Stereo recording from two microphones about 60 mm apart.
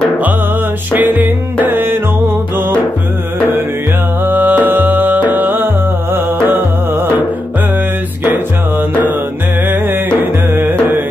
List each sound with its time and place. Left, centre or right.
0.9 s music: right
4.2 s music: right